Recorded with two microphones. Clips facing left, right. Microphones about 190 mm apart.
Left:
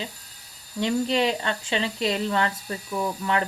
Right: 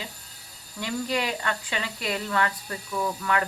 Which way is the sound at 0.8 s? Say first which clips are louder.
Left 5 dB; 25° left (ahead or behind).